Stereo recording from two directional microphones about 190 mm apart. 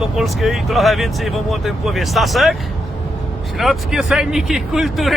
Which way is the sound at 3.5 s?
Centre (ahead or behind).